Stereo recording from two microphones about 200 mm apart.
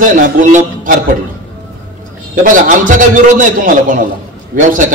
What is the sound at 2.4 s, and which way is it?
A man's voice, 45° right (ahead or behind).